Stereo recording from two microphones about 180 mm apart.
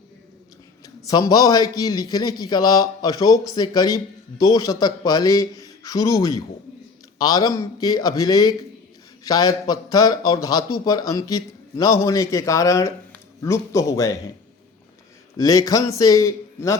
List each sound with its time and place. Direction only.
1.0 s a man's voice: 20° left (ahead or behind)
15.4 s a man's voice: 20° left (ahead or behind)